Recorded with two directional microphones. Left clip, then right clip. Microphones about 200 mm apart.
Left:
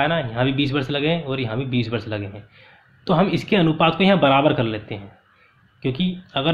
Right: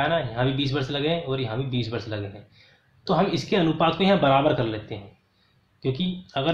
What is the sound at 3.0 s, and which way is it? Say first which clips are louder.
Speech: left 3 dB; 35° left (ahead or behind).